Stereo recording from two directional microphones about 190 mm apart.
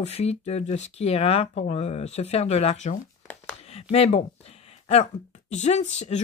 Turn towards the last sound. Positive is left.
turn(degrees=35)  # may be behind; listen again after turning